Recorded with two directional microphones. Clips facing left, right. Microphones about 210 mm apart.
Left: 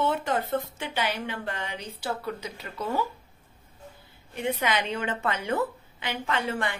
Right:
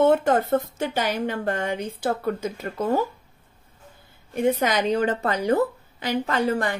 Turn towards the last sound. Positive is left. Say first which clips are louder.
# right 6 dB
turn(degrees=-40)  # may be behind; listen again after turning